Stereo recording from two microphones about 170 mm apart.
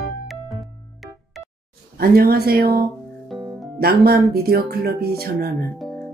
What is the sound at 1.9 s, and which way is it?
Speech, 65° right (ahead or behind).